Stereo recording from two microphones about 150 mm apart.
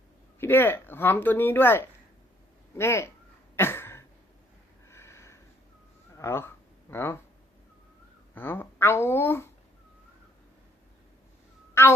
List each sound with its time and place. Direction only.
0.3 s speech: 15° left (ahead or behind)
3.5 s a sound: 15° left (ahead or behind)
4.9 s sniff: 15° left (ahead or behind)
6.1 s speech: 15° left (ahead or behind)
8.4 s speech: 15° left (ahead or behind)
11.7 s a sound: 15° left (ahead or behind)